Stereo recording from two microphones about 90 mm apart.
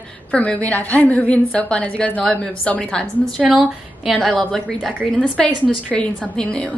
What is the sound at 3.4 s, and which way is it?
Speech, 15° right (ahead or behind).